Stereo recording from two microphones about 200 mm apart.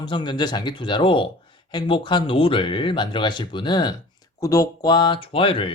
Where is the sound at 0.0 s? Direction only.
25° left (ahead or behind).